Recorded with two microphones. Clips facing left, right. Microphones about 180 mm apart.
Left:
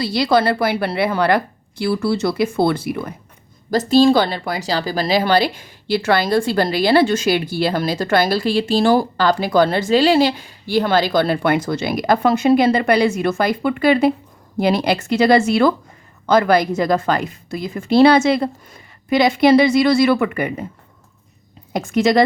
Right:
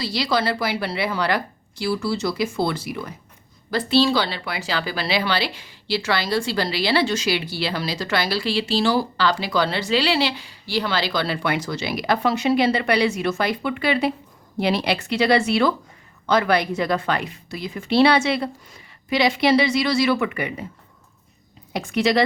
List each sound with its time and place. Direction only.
0.0 s a woman's voice: 55° left (ahead or behind)
3.7 s a woman's voice: 40° left (ahead or behind)
21.7 s a woman's voice: 45° left (ahead or behind)